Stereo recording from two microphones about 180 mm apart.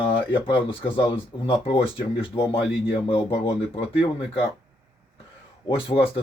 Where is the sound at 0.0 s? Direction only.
30° left (ahead or behind).